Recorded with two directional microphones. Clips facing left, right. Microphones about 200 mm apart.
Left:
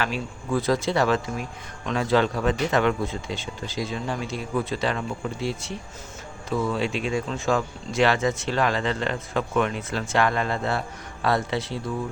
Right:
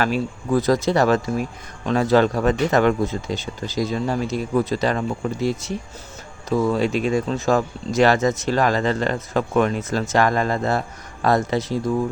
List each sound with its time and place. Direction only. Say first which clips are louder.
0.0 s speech: right 7 dB; 40° right (ahead or behind)